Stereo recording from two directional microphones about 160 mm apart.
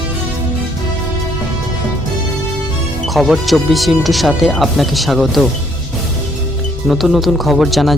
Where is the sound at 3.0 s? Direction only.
Centre (ahead or behind).